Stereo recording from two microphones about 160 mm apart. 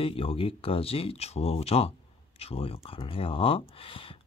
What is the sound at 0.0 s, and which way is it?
Speech, 35° left (ahead or behind).